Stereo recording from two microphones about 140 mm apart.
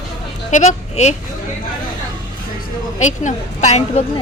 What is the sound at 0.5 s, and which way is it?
Speech, 55° left (ahead or behind).